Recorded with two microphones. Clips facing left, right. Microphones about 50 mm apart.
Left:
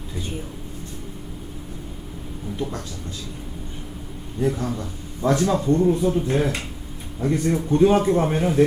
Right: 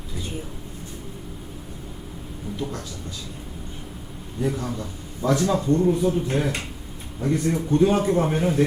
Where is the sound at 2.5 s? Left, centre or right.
Centre.